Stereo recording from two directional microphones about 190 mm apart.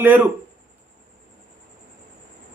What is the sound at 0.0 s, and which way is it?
Speech, 10° right (ahead or behind).